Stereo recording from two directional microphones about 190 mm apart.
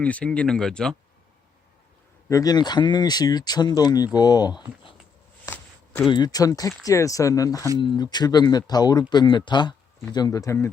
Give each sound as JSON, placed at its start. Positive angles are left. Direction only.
{"t": 0.0, "sound": "speech", "side_deg": 5}
{"t": 2.3, "sound": "speech", "side_deg": 20}
{"t": 5.5, "sound": "a sound", "side_deg": 10}
{"t": 6.1, "sound": "speech", "side_deg": 20}